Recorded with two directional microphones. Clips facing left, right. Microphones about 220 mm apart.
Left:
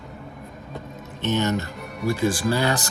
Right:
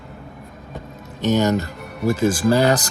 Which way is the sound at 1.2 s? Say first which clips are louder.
Right 5 dB; 40° right (ahead or behind).